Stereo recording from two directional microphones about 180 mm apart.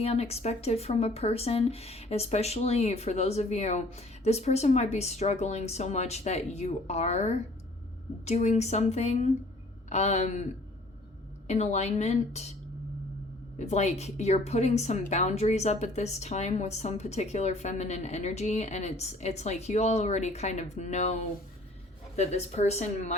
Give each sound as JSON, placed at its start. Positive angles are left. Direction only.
{"t": 0.0, "sound": "a woman's voice", "side_deg": 35}
{"t": 11.4, "sound": "a woman's voice", "side_deg": 40}
{"t": 13.6, "sound": "a woman's voice", "side_deg": 40}